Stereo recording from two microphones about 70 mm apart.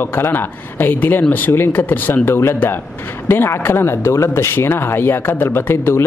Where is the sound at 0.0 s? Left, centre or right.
Left.